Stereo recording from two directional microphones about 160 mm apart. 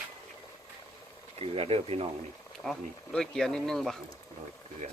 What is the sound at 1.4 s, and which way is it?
Speech, 35° right (ahead or behind).